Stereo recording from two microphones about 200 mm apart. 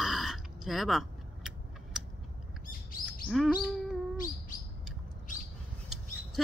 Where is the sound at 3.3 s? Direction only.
Centre (ahead or behind).